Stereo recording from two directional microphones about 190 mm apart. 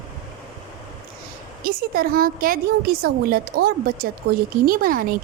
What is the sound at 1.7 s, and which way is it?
A woman's voice, 50° right (ahead or behind).